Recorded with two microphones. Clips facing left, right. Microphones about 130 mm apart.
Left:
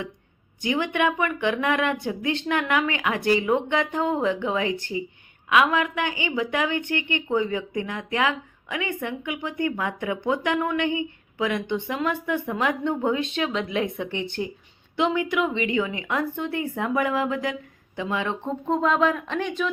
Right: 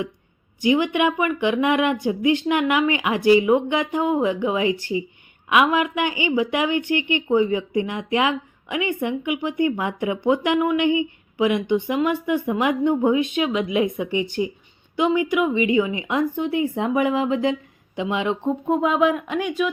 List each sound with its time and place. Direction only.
0.6 s a woman's voice: 15° right (ahead or behind)